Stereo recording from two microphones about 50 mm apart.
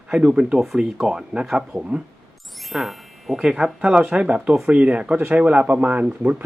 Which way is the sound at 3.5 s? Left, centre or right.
Right.